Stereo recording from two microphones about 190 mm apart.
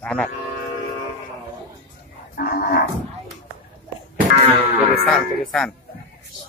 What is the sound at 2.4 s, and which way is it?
Speech, 50° left (ahead or behind).